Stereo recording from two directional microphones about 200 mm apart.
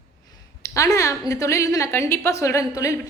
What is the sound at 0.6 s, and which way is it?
A woman's voice, 15° left (ahead or behind).